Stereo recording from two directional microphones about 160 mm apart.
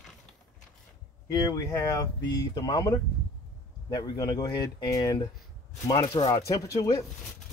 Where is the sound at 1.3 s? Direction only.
25° left (ahead or behind).